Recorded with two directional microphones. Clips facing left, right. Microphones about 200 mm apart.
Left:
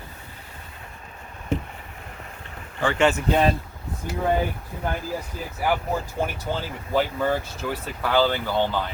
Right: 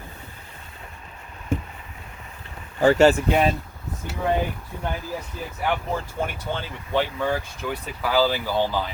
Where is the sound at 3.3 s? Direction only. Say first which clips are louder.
Even; 10° right (ahead or behind).